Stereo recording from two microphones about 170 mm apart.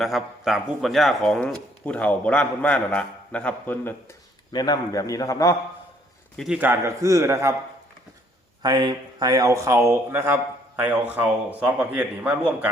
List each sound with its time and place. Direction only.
0.0 s speech: centre (ahead or behind)
4.5 s a man's voice: 25° left (ahead or behind)
6.3 s a man's voice: centre (ahead or behind)
6.6 s speech: 15° right (ahead or behind)
8.6 s speech: 25° right (ahead or behind); by 12.5 s 5° right (ahead or behind)